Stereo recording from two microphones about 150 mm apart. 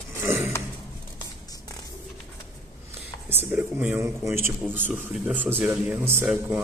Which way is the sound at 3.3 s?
10° right (ahead or behind).